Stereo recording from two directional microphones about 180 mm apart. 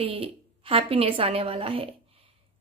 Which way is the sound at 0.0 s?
30° right (ahead or behind).